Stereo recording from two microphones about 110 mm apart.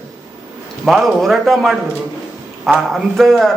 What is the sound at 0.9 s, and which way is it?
Speech, centre (ahead or behind).